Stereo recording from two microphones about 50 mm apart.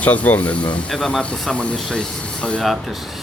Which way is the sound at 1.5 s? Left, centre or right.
Centre.